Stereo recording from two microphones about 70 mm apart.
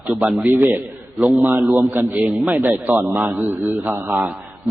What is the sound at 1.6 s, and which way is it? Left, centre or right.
Speech, right.